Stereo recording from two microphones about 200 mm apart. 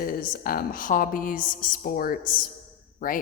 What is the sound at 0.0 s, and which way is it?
A woman's voice, 45° left (ahead or behind).